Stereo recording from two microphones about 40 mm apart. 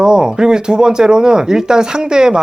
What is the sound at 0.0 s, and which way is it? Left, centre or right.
Speech, centre.